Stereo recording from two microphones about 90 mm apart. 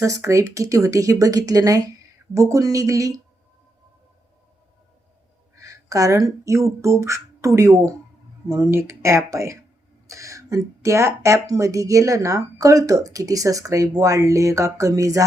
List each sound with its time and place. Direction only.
0.0 s speech: 35° right (ahead or behind)
5.5 s speech: 35° right (ahead or behind)